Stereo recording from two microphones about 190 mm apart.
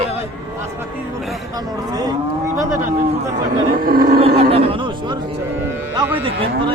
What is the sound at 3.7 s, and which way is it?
Speech, 50° right (ahead or behind).